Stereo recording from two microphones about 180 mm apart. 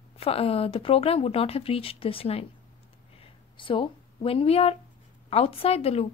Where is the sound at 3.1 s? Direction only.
30° left (ahead or behind).